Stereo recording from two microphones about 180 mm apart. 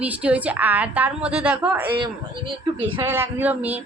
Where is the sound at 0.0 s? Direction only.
5° right (ahead or behind).